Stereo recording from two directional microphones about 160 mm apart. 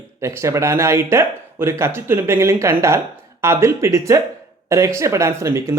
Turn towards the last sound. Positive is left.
turn(degrees=-20)  # may be behind; listen again after turning